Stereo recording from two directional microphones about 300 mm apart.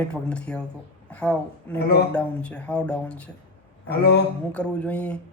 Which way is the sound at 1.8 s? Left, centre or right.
Left.